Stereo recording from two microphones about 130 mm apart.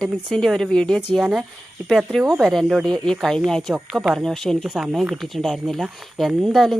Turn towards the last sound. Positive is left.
turn(degrees=0)  # may be behind; listen again after turning